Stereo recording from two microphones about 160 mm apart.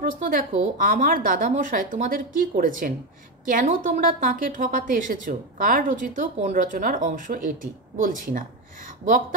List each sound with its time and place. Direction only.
0.0 s a woman's voice: 60° right (ahead or behind)